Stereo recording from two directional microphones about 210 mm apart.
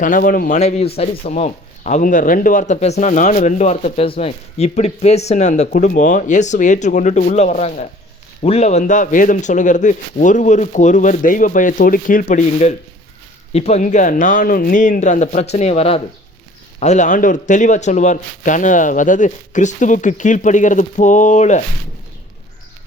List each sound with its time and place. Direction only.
0.0 s speech: 40° left (ahead or behind)